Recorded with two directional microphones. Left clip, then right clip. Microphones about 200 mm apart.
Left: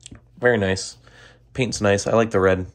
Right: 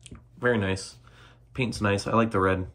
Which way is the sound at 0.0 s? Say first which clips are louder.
Left 7 dB; 20° left (ahead or behind).